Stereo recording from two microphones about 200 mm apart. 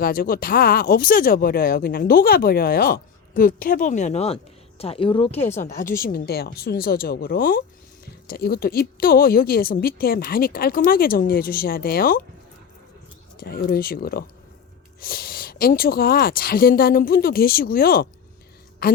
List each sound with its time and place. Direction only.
0.0 s speech: 45° left (ahead or behind); by 5.4 s 25° left (ahead or behind)
5.4 s speech: 10° left (ahead or behind)
6.0 s speech: 45° left (ahead or behind)
13.4 s speech: 45° left (ahead or behind)